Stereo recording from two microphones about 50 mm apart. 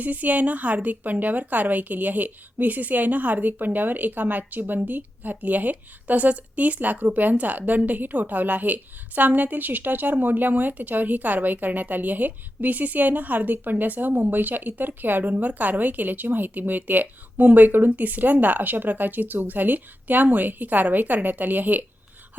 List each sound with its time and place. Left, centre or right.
0.0 s a woman's voice: right